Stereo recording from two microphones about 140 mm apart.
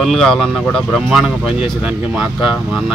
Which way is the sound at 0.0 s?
5° left (ahead or behind).